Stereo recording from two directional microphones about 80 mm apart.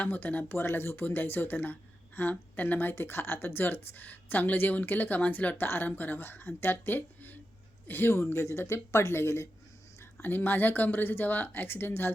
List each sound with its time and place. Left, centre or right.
0.0 s speech: left